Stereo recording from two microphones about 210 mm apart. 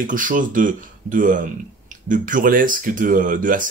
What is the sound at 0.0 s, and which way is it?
Speech, 40° right (ahead or behind).